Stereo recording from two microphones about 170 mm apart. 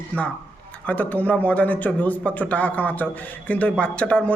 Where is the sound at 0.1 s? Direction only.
5° left (ahead or behind).